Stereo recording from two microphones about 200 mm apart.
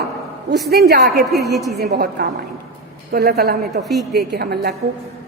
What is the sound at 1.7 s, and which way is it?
A woman's voice, 55° right (ahead or behind).